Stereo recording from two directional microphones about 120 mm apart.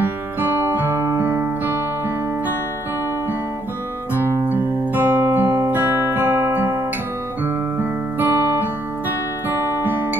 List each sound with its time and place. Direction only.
0.0 s music: 15° right (ahead or behind)
4.2 s music: 20° right (ahead or behind)
7.4 s guitar: 15° right (ahead or behind)